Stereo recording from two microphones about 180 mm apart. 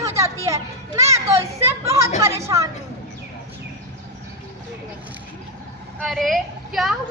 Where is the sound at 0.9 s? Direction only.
15° right (ahead or behind).